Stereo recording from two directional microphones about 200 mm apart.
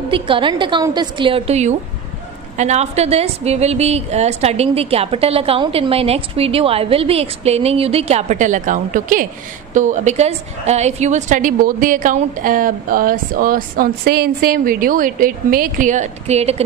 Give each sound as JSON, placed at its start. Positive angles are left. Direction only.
{"t": 0.1, "sound": "a woman's voice", "side_deg": -25}